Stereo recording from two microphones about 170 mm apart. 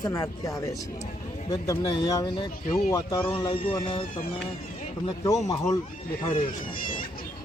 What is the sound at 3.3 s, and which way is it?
Music, 30° left (ahead or behind).